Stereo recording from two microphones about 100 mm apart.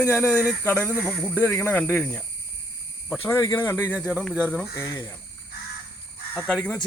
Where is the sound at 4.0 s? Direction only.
10° right (ahead or behind).